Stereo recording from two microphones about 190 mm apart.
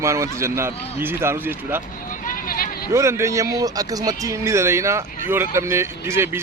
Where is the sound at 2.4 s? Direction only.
50° left (ahead or behind).